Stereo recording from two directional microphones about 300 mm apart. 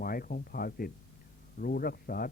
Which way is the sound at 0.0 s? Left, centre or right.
Left.